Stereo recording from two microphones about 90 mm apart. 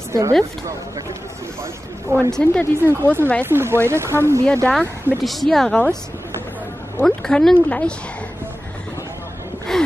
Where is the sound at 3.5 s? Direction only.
30° right (ahead or behind).